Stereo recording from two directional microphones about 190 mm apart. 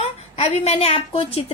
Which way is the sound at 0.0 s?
35° left (ahead or behind).